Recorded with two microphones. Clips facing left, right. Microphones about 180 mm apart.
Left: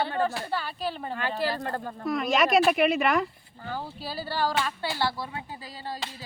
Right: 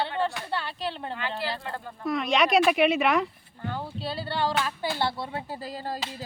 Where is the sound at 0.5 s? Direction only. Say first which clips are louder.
Left 1 dB; centre (ahead or behind).